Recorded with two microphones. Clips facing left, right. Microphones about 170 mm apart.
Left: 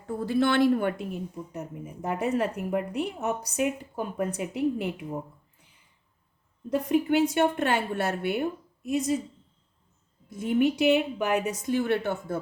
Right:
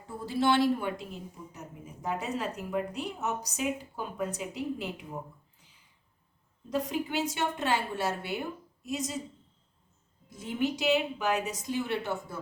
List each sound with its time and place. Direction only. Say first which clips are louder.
0.3 s a woman's voice: left 3 dB; 55° left (ahead or behind)
5.5 s a sound: left 2 dB; 55° left (ahead or behind)
6.7 s a woman's voice: left 7 dB; 55° left (ahead or behind)
10.2 s a woman's voice: left 7 dB; 60° left (ahead or behind)